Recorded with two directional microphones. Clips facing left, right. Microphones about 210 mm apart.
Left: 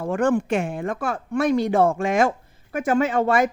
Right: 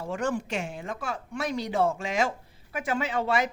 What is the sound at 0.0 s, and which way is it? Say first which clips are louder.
Speech: left 9 dB; 55° left (ahead or behind).